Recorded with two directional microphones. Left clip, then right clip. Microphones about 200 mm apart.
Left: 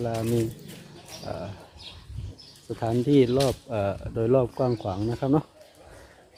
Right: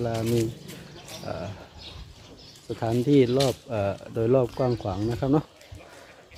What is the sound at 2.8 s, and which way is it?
Speech, 5° left (ahead or behind).